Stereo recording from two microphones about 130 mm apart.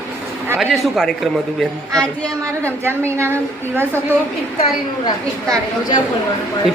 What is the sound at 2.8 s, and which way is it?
A woman's voice, 20° right (ahead or behind).